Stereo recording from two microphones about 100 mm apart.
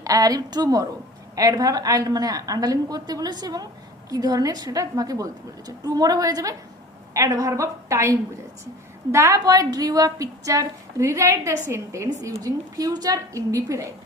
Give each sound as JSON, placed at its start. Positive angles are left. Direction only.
{"t": 0.0, "sound": "a woman's voice", "side_deg": -35}
{"t": 9.1, "sound": "a woman's voice", "side_deg": -30}